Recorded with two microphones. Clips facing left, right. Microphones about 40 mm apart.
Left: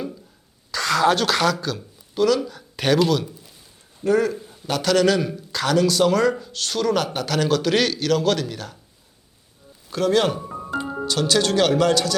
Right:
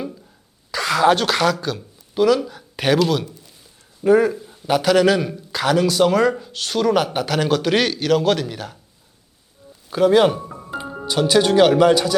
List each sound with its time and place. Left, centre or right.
0.7 s a woman's voice: centre
4.0 s speech: centre
9.9 s speech: centre